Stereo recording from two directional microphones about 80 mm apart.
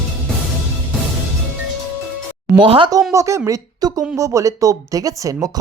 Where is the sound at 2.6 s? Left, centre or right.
Right.